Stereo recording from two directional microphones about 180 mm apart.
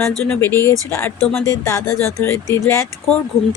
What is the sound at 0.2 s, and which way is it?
Speech, 10° left (ahead or behind).